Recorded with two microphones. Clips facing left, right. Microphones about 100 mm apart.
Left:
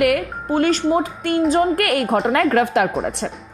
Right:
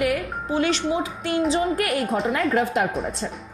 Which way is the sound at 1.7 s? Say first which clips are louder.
Left 5 dB; 70° left (ahead or behind).